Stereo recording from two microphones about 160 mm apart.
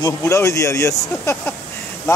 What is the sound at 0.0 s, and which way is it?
Speech, 20° left (ahead or behind).